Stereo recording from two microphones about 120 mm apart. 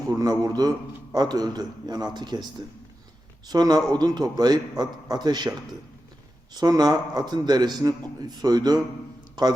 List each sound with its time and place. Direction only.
0.1 s a man's voice: 30° right (ahead or behind)
3.5 s a man's voice: 35° right (ahead or behind)
6.6 s a man's voice: 35° right (ahead or behind)